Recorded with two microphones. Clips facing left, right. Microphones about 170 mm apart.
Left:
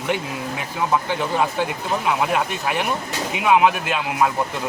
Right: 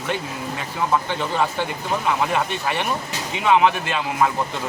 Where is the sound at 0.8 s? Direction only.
15° left (ahead or behind).